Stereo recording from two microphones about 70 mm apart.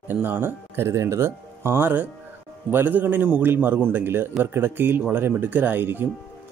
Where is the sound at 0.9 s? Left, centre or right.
Right.